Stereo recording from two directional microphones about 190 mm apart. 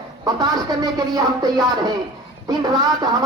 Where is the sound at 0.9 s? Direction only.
20° right (ahead or behind).